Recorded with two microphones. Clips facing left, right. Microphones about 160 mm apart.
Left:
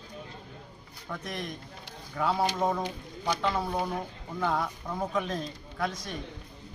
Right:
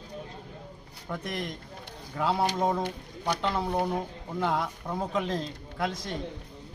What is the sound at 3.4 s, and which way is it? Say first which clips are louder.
Speech: right 2 dB; 20° right (ahead or behind).